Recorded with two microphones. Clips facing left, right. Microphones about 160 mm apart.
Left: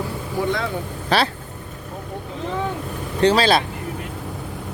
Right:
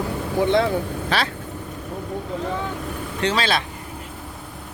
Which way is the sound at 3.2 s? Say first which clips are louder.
Left 6 dB; 35° left (ahead or behind).